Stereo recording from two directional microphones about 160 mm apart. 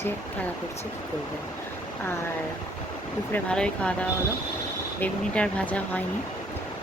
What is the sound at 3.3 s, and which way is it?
Speech, 5° left (ahead or behind).